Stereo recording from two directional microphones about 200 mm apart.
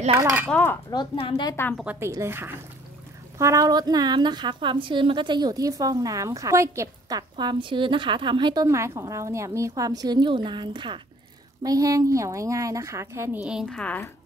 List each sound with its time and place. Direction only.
0.5 s speech: 10° left (ahead or behind)
0.8 s speech: 25° left (ahead or behind)
1.5 s speech: 10° left (ahead or behind)
1.8 s a woman's voice: 10° right (ahead or behind); by 14.1 s 10° left (ahead or behind)